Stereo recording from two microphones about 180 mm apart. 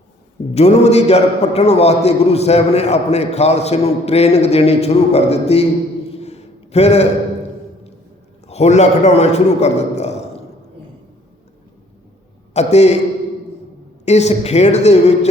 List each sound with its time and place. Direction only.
0.5 s a man's voice: 35° left (ahead or behind)
6.1 s a sound: 35° left (ahead or behind)
8.4 s a man's voice: 40° left (ahead or behind)
12.5 s a man's voice: 40° left (ahead or behind)
14.0 s a man's voice: 40° left (ahead or behind)